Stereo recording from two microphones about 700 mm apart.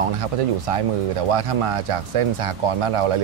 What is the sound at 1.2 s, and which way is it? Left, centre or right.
Speech, right.